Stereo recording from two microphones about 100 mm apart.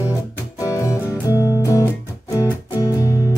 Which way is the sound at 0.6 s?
30° left (ahead or behind).